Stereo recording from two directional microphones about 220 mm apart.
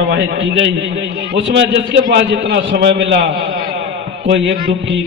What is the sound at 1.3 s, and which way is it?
A man's voice, 50° right (ahead or behind).